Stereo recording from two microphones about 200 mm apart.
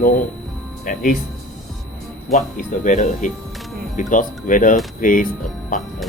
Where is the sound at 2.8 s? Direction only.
40° left (ahead or behind).